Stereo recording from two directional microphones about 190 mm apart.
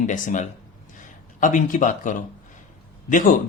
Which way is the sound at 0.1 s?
40° left (ahead or behind).